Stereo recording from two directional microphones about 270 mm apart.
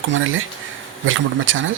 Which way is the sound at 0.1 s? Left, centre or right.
Right.